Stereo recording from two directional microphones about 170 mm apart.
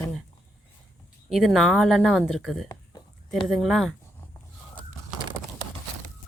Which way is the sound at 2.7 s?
25° left (ahead or behind).